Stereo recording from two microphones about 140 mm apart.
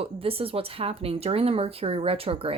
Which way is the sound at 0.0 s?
45° right (ahead or behind).